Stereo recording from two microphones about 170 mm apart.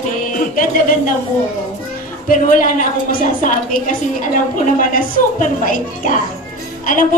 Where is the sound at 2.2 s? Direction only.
50° left (ahead or behind).